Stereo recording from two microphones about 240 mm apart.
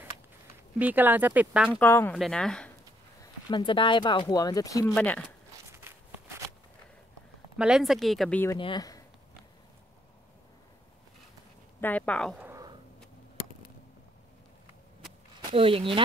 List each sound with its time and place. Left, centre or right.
0.7 s speech: centre
1.8 s speech: centre
3.4 s speech: centre
5.7 s walk: centre
7.5 s speech: centre
8.5 s speech: centre
11.8 s speech: centre
12.4 s a sound: centre
15.5 s speech: right